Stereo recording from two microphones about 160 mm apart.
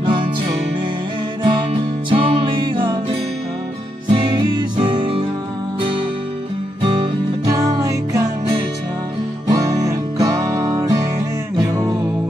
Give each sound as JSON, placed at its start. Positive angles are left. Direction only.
{"t": 0.0, "sound": "music", "side_deg": -30}
{"t": 1.4, "sound": "music", "side_deg": -30}
{"t": 4.1, "sound": "music", "side_deg": -30}
{"t": 7.4, "sound": "music", "side_deg": -20}
{"t": 9.5, "sound": "music", "side_deg": -20}